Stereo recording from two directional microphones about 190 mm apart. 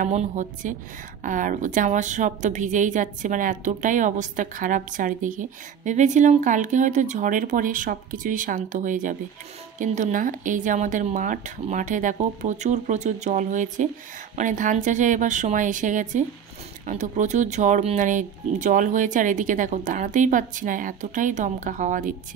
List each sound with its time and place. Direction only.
0.0 s a woman's voice: 40° right (ahead or behind)